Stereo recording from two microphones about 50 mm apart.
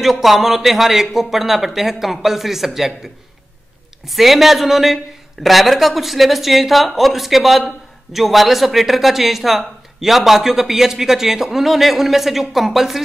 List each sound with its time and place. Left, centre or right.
0.0 s speech: centre
4.1 s speech: centre